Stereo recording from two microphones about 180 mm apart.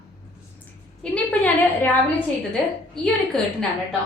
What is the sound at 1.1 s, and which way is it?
A woman's voice, 5° left (ahead or behind).